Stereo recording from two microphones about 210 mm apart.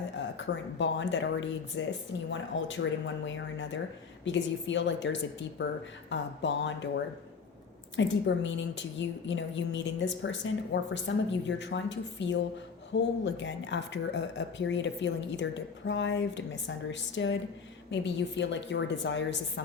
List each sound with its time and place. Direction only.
0.3 s speech: 60° left (ahead or behind)